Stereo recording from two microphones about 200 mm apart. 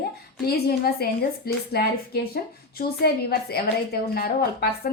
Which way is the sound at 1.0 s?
50° left (ahead or behind).